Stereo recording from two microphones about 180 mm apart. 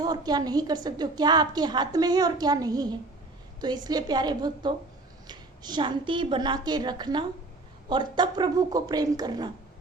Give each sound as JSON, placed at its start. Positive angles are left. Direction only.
{"t": 0.0, "sound": "a woman's voice", "side_deg": -20}